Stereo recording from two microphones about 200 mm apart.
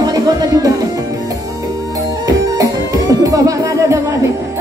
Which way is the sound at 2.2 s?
20° right (ahead or behind).